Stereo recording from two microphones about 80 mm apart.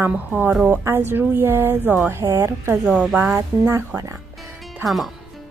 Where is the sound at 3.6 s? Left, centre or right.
Right.